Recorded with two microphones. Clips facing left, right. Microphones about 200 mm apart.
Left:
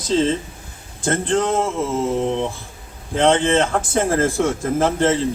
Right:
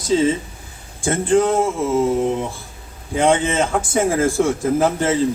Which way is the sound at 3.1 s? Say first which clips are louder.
Left 1 dB; 10° right (ahead or behind).